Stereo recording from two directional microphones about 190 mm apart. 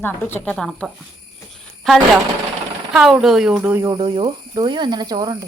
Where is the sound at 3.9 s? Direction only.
25° right (ahead or behind).